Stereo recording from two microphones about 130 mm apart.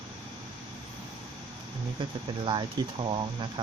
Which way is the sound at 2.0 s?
35° right (ahead or behind).